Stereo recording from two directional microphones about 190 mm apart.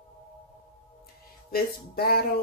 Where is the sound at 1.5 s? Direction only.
55° left (ahead or behind).